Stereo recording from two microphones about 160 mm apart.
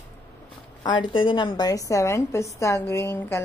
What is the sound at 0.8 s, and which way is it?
A woman's voice, 30° left (ahead or behind).